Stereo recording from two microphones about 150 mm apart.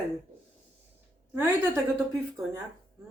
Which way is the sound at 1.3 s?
15° right (ahead or behind).